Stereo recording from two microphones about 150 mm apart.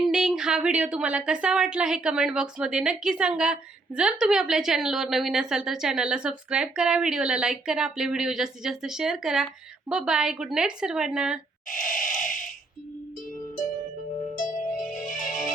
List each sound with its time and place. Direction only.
0.0 s a woman's voice: centre (ahead or behind)
11.7 s a sound: 65° left (ahead or behind)
12.0 s a woman's voice: centre (ahead or behind)
14.4 s music: 60° left (ahead or behind)